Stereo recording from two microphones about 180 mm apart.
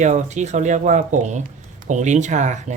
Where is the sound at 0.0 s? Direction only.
40° right (ahead or behind).